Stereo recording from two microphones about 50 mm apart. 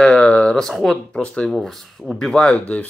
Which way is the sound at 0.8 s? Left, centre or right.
Centre.